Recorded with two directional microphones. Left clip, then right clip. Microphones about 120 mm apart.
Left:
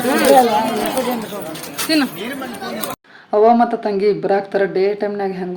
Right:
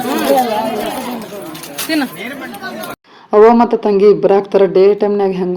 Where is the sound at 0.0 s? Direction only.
45° left (ahead or behind).